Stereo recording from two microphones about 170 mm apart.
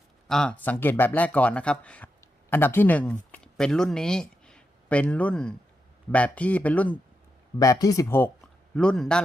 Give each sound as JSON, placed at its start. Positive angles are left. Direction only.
{"t": 0.3, "sound": "speech", "side_deg": 5}
{"t": 7.6, "sound": "speech", "side_deg": 20}
{"t": 8.7, "sound": "speech", "side_deg": 5}